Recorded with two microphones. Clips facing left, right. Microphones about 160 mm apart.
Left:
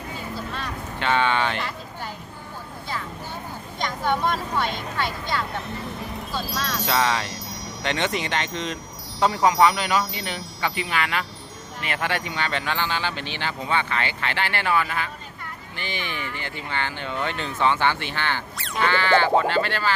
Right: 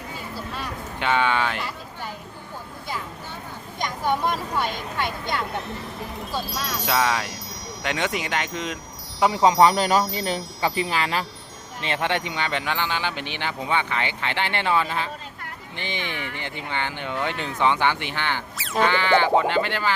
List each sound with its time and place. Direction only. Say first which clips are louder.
0.5 s vehicle: even; 10° right (ahead or behind)
3.8 s speech: even; 15° right (ahead or behind)
6.4 s speech: left 1 dB; centre (ahead or behind)
9.3 s speech: right 3 dB; 25° right (ahead or behind)
9.6 s wind chime: right 2 dB; 40° right (ahead or behind)
11.8 s speech: right 2 dB; 25° right (ahead or behind)
18.5 s bleat: right 3 dB; centre (ahead or behind)
18.9 s speech: left 1 dB; 15° right (ahead or behind)